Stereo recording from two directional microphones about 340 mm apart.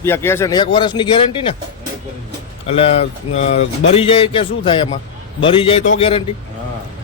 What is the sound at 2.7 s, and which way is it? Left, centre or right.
A man's voice, centre.